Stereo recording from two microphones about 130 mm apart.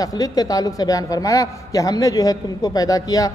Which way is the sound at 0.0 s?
30° left (ahead or behind).